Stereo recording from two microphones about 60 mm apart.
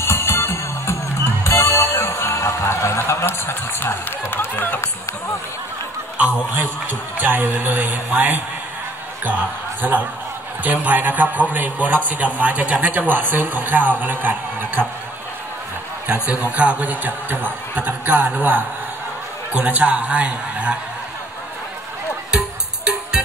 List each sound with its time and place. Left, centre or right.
0.0 s music: left
2.3 s speech: left
7.2 s a woman's voice: right
9.8 s a man's voice: right
16.1 s a man's voice: right
23.2 s music: centre